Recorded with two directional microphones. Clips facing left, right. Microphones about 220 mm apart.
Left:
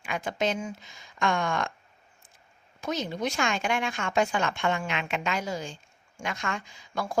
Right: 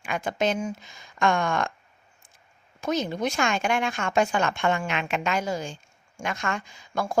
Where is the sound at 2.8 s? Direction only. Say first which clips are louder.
Right 4 dB; 50° right (ahead or behind).